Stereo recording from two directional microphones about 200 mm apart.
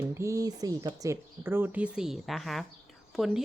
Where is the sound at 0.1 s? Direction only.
15° right (ahead or behind).